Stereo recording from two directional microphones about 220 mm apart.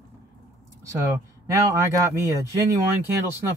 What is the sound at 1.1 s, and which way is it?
Speech, 15° right (ahead or behind).